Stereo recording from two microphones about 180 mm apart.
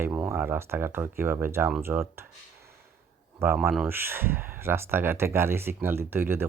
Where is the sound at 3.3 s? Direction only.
15° right (ahead or behind).